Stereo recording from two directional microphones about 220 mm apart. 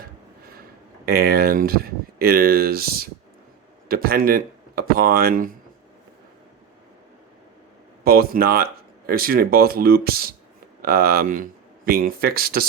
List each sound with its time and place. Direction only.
1.0 s speech: 45° right (ahead or behind)
8.0 s speech: 45° right (ahead or behind)